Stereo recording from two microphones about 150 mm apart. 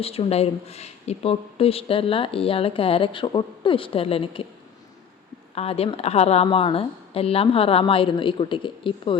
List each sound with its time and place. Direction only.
0.0 s speech: 40° left (ahead or behind)
5.5 s speech: 40° left (ahead or behind)